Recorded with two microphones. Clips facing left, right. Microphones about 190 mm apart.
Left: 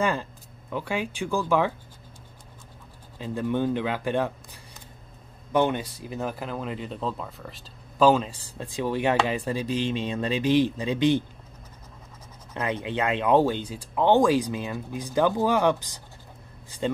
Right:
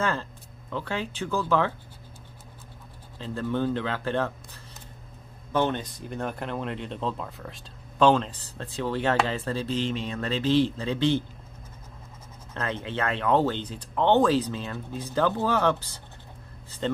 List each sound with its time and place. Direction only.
0.0 s speech: 15° left (ahead or behind)
3.2 s speech: 15° left (ahead or behind)
5.5 s speech: 15° left (ahead or behind)
12.5 s speech: 15° left (ahead or behind)